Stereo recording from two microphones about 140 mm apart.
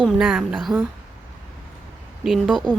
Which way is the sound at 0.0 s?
5° right (ahead or behind).